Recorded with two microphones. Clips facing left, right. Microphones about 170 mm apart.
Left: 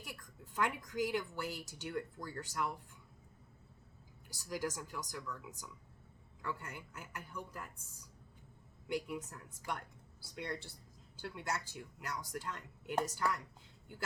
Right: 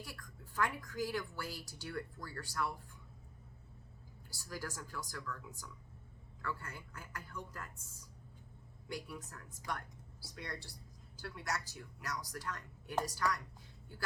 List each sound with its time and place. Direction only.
0.0 s a woman's voice: 20° left (ahead or behind)
4.3 s speech: 20° left (ahead or behind)
8.9 s speech: 20° left (ahead or behind)